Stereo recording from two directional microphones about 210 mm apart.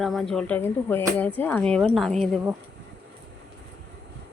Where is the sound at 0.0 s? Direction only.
Centre (ahead or behind).